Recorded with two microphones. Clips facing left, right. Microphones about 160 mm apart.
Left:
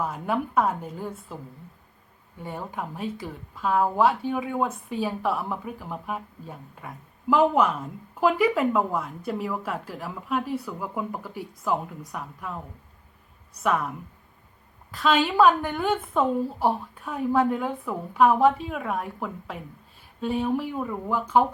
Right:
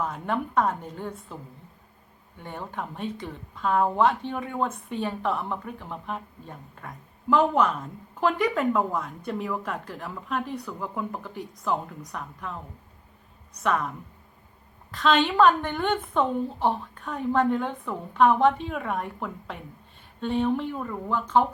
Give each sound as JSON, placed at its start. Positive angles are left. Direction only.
{"t": 0.0, "sound": "a woman's voice", "side_deg": 5}
{"t": 2.4, "sound": "a woman's voice", "side_deg": 5}
{"t": 14.9, "sound": "a woman's voice", "side_deg": 5}